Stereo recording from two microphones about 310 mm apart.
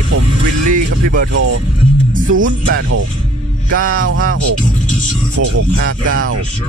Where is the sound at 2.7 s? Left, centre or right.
Right.